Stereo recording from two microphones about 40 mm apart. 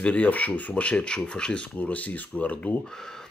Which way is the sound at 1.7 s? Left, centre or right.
Left.